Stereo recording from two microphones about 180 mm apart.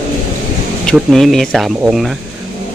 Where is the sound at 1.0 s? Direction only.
Centre (ahead or behind).